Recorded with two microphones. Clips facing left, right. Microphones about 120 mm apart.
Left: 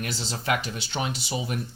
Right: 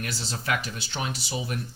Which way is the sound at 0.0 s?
30° left (ahead or behind).